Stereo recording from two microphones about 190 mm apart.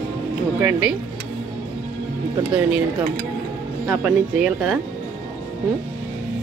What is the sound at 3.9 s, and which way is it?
Speech, 5° right (ahead or behind).